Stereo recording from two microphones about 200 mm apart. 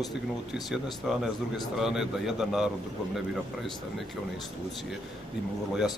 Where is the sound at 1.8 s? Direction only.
Centre (ahead or behind).